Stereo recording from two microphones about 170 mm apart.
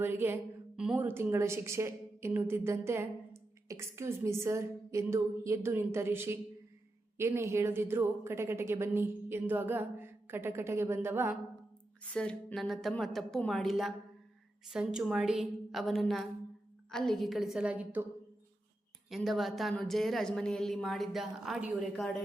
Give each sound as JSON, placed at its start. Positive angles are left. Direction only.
{"t": 0.0, "sound": "a woman's voice", "side_deg": -10}
{"t": 12.0, "sound": "speech", "side_deg": 5}
{"t": 19.1, "sound": "speech", "side_deg": 0}